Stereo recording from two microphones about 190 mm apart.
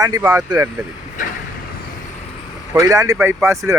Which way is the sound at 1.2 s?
40° left (ahead or behind).